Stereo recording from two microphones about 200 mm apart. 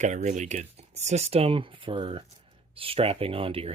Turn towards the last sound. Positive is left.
turn(degrees=-25)  # may be behind; listen again after turning